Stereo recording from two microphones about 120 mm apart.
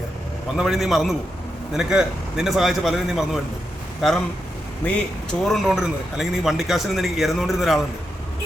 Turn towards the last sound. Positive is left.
turn(degrees=0)  # may be behind; listen again after turning